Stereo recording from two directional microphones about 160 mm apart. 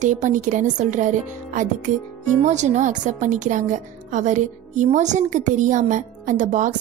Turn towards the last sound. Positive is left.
turn(degrees=-50)  # may be behind; listen again after turning